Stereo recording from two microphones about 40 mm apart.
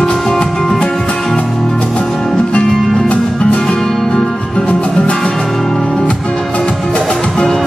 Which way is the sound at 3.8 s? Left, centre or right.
Centre.